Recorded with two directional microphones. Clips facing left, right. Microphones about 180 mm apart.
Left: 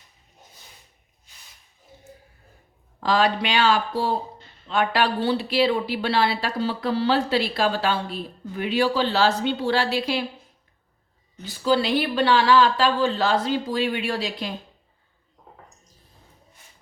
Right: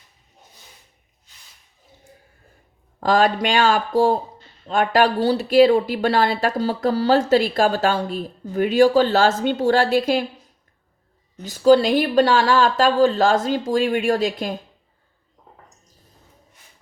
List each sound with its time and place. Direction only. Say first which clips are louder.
3.0 s speech: right 4 dB; 45° right (ahead or behind)
11.4 s speech: right 8 dB; 45° right (ahead or behind)